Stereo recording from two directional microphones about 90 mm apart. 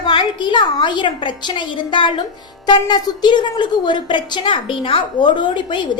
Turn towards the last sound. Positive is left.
turn(degrees=60)  # may be behind; listen again after turning